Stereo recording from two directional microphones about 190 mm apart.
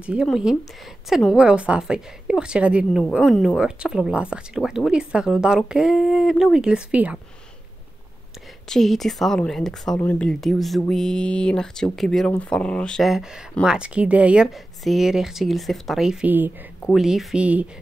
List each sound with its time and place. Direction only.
0.0 s speech: 5° right (ahead or behind)
8.6 s speech: centre (ahead or behind)